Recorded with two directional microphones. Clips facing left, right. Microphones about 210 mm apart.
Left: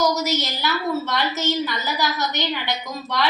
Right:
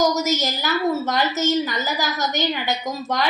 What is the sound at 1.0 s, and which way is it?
A woman's voice, 45° right (ahead or behind).